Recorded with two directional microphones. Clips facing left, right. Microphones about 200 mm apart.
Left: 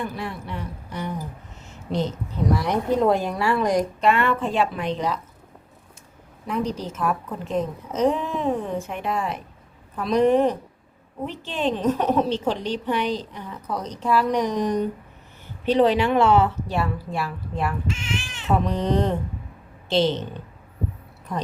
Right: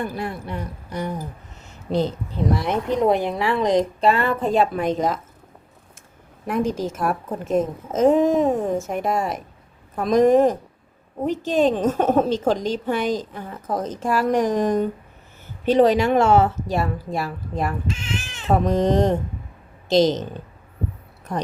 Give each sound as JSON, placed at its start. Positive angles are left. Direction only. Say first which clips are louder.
{"t": 0.0, "sound": "a woman's voice", "louder": "right 3 dB", "side_deg": -45}
{"t": 2.6, "sound": "speech", "louder": "left 1 dB", "side_deg": -20}
{"t": 4.0, "sound": "a woman's voice", "louder": "right 1 dB", "side_deg": -35}
{"t": 6.5, "sound": "a woman's voice", "louder": "right 4 dB", "side_deg": -50}